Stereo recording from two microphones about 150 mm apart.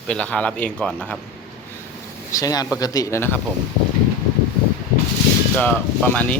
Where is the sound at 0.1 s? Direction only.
5° left (ahead or behind).